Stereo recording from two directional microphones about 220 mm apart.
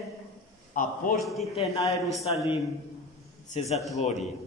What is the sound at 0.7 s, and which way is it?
Speech, 40° left (ahead or behind).